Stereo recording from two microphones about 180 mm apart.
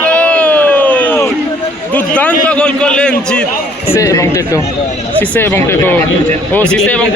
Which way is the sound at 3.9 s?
15° left (ahead or behind).